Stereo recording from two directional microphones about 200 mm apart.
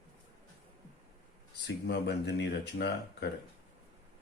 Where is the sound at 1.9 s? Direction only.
55° left (ahead or behind).